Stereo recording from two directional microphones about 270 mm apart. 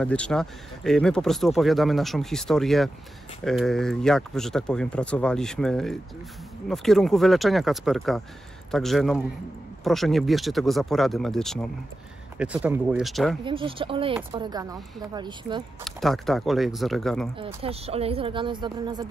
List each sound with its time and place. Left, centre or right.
0.0 s speech: centre
13.4 s speech: centre
15.8 s speech: centre
17.4 s speech: centre